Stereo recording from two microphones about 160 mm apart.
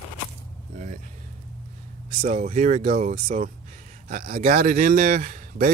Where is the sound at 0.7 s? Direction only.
50° right (ahead or behind).